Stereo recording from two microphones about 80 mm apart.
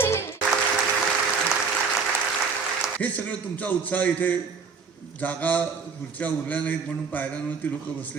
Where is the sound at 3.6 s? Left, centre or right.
Centre.